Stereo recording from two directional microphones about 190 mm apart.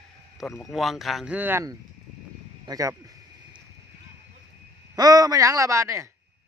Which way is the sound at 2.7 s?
20° right (ahead or behind).